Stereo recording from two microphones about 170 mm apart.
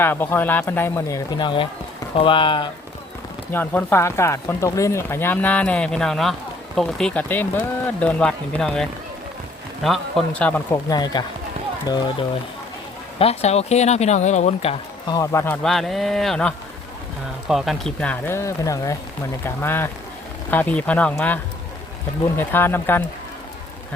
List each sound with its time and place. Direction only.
0.0 s speech: 10° left (ahead or behind); by 2.6 s 30° left (ahead or behind)
3.5 s speech: 10° left (ahead or behind)
10.7 s speech: 25° left (ahead or behind)
13.1 s speech: 35° left (ahead or behind)
15.1 s speech: 15° left (ahead or behind)
15.6 s speech: centre (ahead or behind)
22.4 s speech: 15° left (ahead or behind)